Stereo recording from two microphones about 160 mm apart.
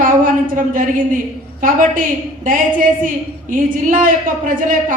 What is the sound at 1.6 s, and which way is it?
Speech, 55° right (ahead or behind).